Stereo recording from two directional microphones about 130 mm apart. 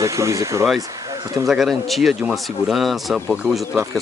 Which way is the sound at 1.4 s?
Centre (ahead or behind).